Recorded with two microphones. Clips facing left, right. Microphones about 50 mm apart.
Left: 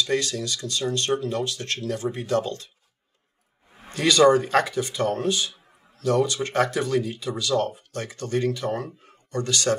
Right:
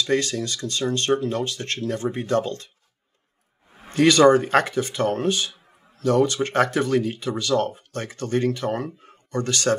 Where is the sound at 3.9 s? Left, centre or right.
Right.